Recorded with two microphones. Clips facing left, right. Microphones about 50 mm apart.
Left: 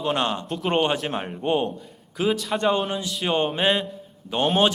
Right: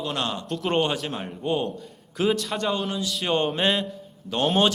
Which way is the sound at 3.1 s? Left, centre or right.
Centre.